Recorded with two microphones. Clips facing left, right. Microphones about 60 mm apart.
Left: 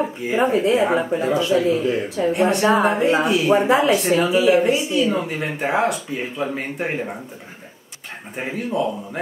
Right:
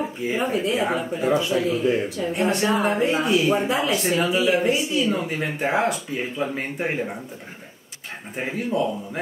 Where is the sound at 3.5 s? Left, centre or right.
Left.